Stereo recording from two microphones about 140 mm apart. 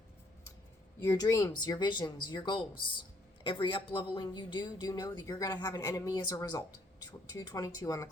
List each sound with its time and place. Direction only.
1.0 s a woman's voice: 25° left (ahead or behind)